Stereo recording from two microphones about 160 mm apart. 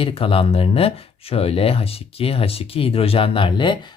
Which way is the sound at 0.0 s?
35° left (ahead or behind).